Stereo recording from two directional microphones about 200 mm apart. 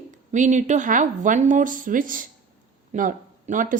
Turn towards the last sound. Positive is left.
turn(degrees=-40)  # may be behind; listen again after turning